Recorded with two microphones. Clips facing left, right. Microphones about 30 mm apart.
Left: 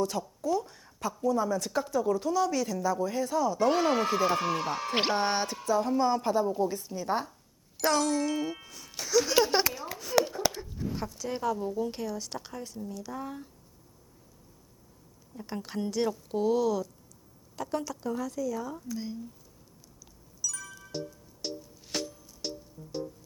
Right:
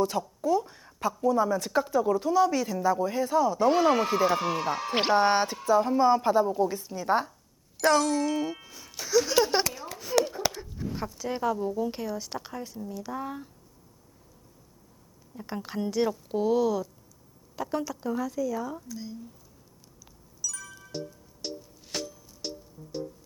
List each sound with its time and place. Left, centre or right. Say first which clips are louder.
0.0 s speech: right 3 dB; centre
9.7 s a sound: right 1 dB; centre
11.9 s speech: right 2 dB; centre
15.4 s speech: right 2 dB; centre
18.9 s speech: left 3 dB; centre
20.4 s music: even; centre